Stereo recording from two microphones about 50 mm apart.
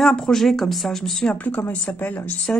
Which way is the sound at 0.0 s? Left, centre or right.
Centre.